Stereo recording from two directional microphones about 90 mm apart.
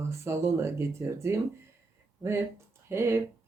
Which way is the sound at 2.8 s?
30° right (ahead or behind).